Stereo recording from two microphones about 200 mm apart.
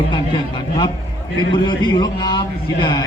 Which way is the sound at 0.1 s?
25° left (ahead or behind).